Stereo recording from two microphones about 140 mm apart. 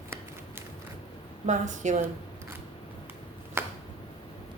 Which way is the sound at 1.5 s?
60° right (ahead or behind).